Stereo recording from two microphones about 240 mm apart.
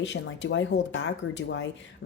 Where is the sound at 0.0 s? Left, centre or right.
Left.